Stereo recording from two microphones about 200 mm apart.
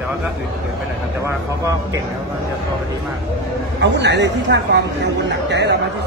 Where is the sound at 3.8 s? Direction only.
60° right (ahead or behind).